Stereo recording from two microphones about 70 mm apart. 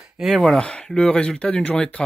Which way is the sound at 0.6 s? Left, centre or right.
Centre.